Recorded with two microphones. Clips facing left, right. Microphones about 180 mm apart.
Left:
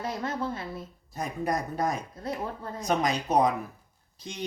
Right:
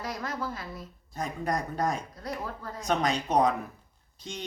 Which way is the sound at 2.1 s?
25° left (ahead or behind).